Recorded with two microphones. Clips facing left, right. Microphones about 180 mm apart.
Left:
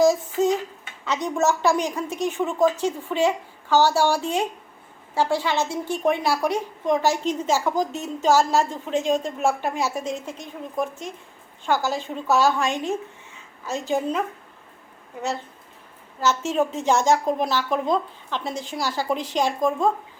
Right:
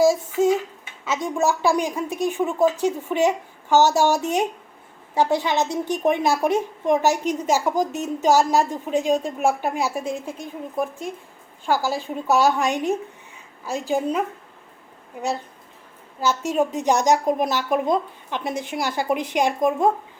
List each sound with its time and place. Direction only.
0.0 s a sound: 10° right (ahead or behind)
1.4 s a woman's voice: 15° right (ahead or behind)
16.2 s a woman's voice: 15° right (ahead or behind)
18.5 s a woman's voice: 60° right (ahead or behind)
18.8 s a woman's voice: 20° right (ahead or behind)